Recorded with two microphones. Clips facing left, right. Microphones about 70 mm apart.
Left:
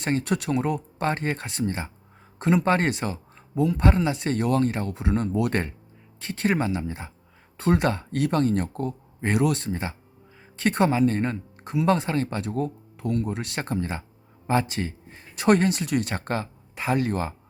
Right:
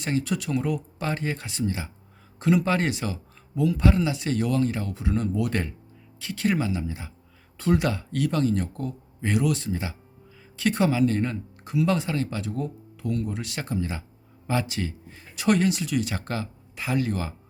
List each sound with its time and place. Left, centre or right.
0.0 s speech: left